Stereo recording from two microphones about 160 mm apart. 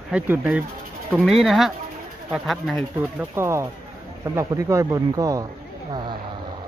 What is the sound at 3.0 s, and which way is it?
Speech, 15° right (ahead or behind).